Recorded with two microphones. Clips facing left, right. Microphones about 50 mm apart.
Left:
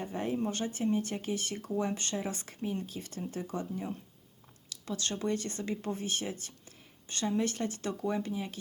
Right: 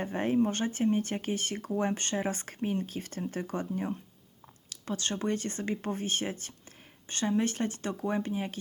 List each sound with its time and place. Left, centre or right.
0.0 s speech: right
4.7 s a sound: right
5.2 s speech: right